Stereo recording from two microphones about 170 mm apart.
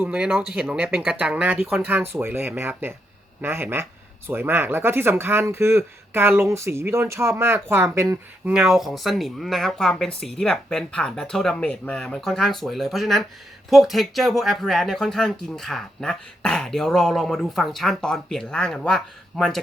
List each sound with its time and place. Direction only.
0.0 s speech: 5° right (ahead or behind)
8.5 s speech: centre (ahead or behind)